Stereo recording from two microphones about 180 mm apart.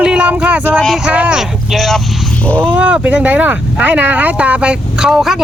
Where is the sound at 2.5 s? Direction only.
5° right (ahead or behind).